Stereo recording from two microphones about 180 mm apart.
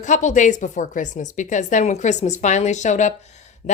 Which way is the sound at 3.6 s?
40° left (ahead or behind).